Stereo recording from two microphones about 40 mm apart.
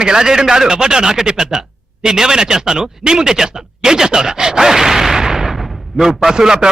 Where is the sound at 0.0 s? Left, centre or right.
Centre.